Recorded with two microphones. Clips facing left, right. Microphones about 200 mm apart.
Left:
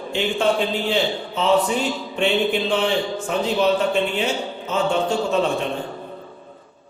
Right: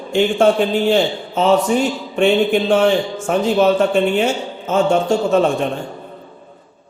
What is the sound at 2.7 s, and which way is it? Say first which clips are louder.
Speech: right 6 dB; 45° right (ahead or behind).